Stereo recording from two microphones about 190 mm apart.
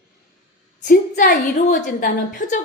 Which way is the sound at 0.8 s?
50° left (ahead or behind).